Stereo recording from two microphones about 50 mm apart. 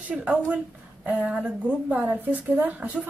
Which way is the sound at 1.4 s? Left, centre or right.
Right.